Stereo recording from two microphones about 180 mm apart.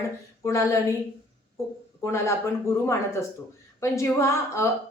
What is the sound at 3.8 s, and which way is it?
Speech, 15° left (ahead or behind).